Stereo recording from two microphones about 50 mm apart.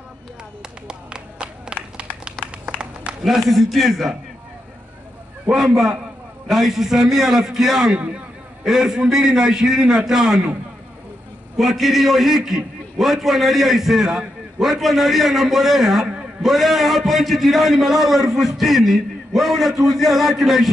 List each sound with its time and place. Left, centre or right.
0.6 s clapping: centre
2.4 s a sound: right
3.3 s a man's voice: centre
5.5 s a man's voice: centre
11.5 s a man's voice: centre